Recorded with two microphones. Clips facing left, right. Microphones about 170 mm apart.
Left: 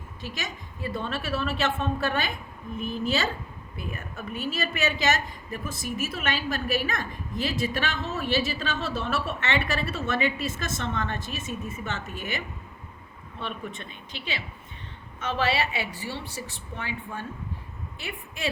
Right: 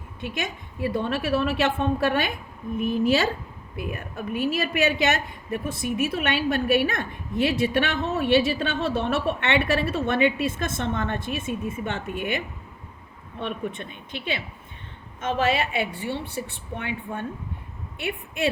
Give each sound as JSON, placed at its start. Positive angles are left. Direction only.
{"t": 0.2, "sound": "a woman's voice", "side_deg": -55}
{"t": 13.4, "sound": "a woman's voice", "side_deg": -55}